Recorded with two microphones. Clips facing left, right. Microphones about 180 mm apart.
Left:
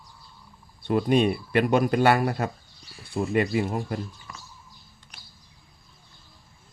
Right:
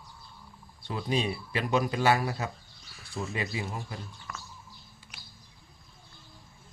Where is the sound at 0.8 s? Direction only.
55° left (ahead or behind).